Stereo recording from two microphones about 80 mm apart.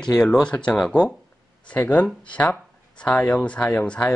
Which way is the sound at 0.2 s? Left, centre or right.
Centre.